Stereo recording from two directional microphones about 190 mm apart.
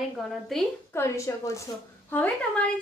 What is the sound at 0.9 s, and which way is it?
A woman's voice, 15° left (ahead or behind).